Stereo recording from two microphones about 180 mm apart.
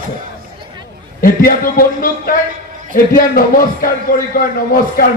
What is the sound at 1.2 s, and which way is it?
A man's voice, 50° left (ahead or behind).